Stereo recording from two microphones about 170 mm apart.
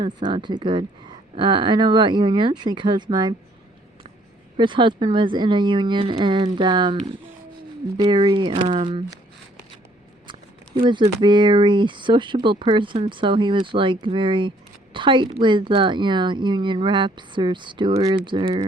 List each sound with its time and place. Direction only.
0.0 s speech: 25° right (ahead or behind)
4.5 s speech: 30° right (ahead or behind)
7.9 s speech: 30° right (ahead or behind)
10.8 s speech: 25° right (ahead or behind)